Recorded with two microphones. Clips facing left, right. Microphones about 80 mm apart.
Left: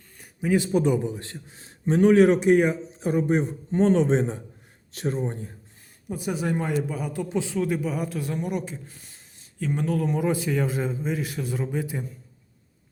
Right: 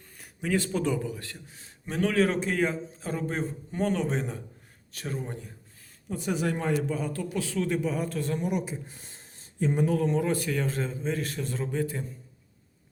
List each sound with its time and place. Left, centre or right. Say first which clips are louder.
0.4 s a man's voice: left 6 dB; centre
6.1 s a man's voice: left 2 dB; centre
7.2 s a man's voice: left 4 dB; left
7.7 s a man's voice: left 1 dB; centre
10.1 s a man's voice: left 2 dB; centre